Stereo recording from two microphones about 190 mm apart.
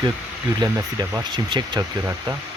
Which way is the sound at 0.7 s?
15° right (ahead or behind).